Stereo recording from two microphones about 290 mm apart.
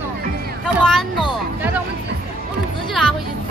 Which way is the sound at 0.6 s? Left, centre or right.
Centre.